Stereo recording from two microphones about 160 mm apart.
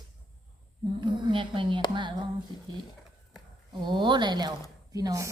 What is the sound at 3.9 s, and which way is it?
Speech, 30° right (ahead or behind).